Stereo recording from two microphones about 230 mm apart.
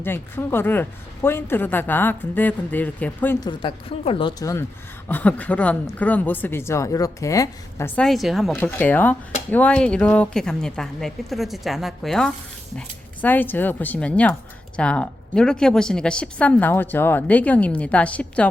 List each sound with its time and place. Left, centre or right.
0.0 s speech: centre
3.6 s a woman's voice: left; by 18.4 s centre